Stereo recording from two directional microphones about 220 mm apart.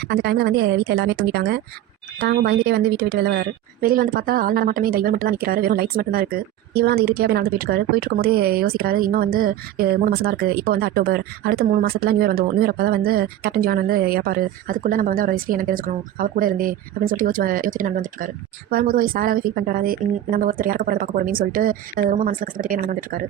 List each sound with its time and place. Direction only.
0.1 s a woman's voice: 50° right (ahead or behind)